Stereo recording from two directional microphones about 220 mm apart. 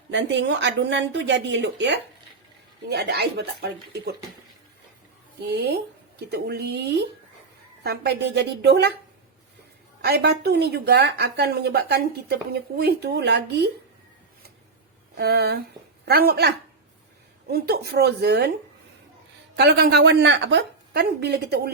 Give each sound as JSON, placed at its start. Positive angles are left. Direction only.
{"t": 0.1, "sound": "a woman's voice", "side_deg": -55}
{"t": 5.5, "sound": "a woman's voice", "side_deg": -50}
{"t": 10.0, "sound": "a woman's voice", "side_deg": -45}
{"t": 15.1, "sound": "a woman's voice", "side_deg": -45}
{"t": 17.5, "sound": "a woman's voice", "side_deg": -45}
{"t": 19.5, "sound": "a woman's voice", "side_deg": -45}